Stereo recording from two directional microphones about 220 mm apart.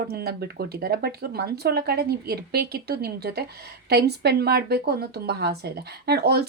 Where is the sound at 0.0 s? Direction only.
45° right (ahead or behind).